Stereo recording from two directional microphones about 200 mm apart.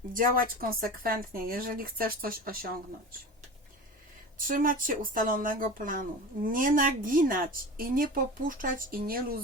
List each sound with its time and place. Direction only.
0.1 s speech: 45° right (ahead or behind)
4.4 s speech: 45° right (ahead or behind)